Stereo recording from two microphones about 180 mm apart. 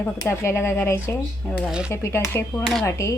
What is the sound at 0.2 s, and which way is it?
Speech, 15° left (ahead or behind).